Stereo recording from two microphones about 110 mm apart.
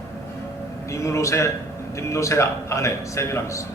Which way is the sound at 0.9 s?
25° left (ahead or behind).